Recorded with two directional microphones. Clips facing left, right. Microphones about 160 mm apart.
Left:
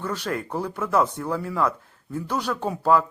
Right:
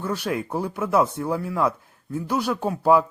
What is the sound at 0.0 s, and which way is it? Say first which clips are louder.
Speech: right 2 dB; 10° right (ahead or behind).